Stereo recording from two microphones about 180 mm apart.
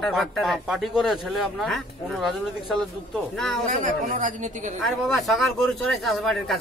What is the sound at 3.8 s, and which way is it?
Speech, 45° right (ahead or behind).